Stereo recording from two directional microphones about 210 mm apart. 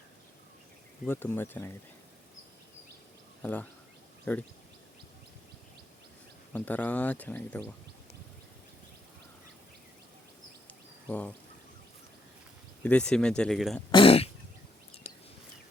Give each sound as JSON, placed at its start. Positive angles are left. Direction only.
{"t": 1.0, "sound": "speech", "side_deg": 10}
{"t": 3.4, "sound": "speech", "side_deg": 5}
{"t": 6.5, "sound": "speech", "side_deg": 5}
{"t": 11.1, "sound": "speech", "side_deg": 5}
{"t": 12.8, "sound": "speech", "side_deg": 5}
{"t": 13.9, "sound": "speech", "side_deg": 25}
{"t": 15.1, "sound": "a sound", "side_deg": 30}